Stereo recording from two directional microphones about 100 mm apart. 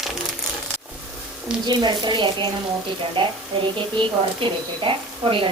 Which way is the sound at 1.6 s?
45° right (ahead or behind).